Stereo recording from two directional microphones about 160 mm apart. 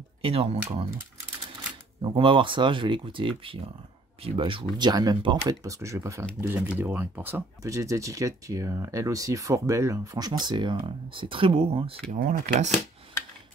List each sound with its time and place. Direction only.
0.2 s speech: 40° right (ahead or behind)
2.0 s speech: 30° right (ahead or behind)
12.2 s speech: 50° right (ahead or behind)